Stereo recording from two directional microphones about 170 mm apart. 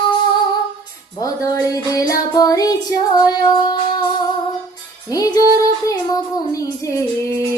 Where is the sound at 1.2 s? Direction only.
20° left (ahead or behind).